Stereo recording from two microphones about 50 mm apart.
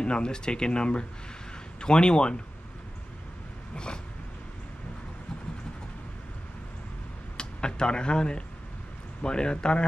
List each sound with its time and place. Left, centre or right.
0.0 s a man's voice: centre
3.7 s a sound: centre
7.3 s a man's voice: centre